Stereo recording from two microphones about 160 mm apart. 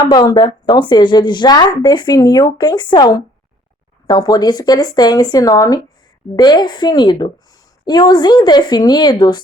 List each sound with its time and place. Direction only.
0.1 s a woman's voice: 25° left (ahead or behind)